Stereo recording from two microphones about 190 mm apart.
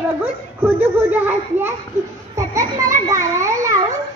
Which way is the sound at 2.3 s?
15° right (ahead or behind).